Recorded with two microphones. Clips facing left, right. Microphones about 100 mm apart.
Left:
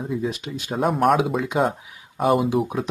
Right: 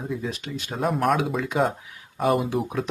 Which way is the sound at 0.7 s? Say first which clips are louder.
Left 4 dB; centre (ahead or behind).